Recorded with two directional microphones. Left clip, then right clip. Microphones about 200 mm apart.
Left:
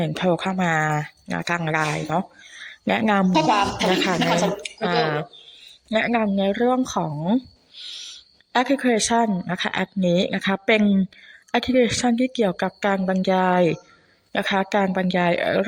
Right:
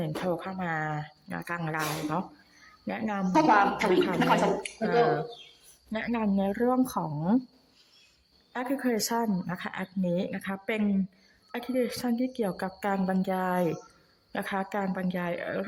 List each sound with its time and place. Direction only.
0.0 s speech: 20° left (ahead or behind); by 3.9 s 35° left (ahead or behind)
4.0 s speech: 25° left (ahead or behind)
5.9 s speech: 15° left (ahead or behind)
8.5 s speech: 20° left (ahead or behind)